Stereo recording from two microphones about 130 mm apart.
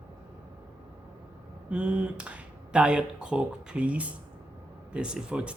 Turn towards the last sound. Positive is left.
turn(degrees=-10)  # may be behind; listen again after turning